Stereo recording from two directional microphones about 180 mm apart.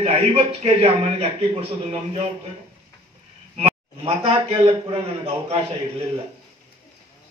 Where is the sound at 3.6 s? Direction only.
30° right (ahead or behind).